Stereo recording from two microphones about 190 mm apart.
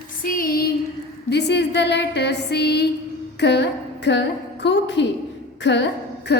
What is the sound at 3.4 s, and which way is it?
A woman's voice, 65° left (ahead or behind).